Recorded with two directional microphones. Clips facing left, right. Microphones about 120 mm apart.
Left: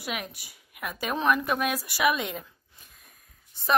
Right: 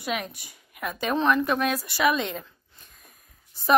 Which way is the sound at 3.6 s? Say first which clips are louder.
Right 4 dB; 5° right (ahead or behind).